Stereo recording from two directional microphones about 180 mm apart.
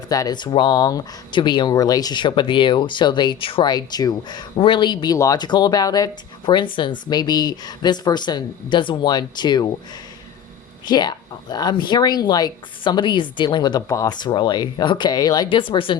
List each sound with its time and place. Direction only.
0.1 s speech: 20° left (ahead or behind)
10.8 s speech: 25° left (ahead or behind)